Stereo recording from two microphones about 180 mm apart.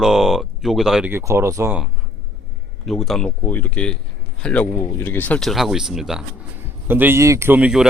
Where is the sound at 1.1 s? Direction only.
15° right (ahead or behind).